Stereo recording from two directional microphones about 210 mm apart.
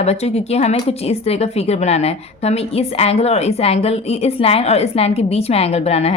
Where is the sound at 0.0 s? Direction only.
30° left (ahead or behind).